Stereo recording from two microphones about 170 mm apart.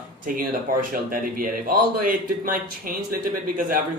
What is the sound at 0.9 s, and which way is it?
Speech, 55° right (ahead or behind).